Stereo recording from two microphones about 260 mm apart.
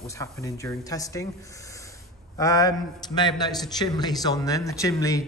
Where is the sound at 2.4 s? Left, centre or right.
Centre.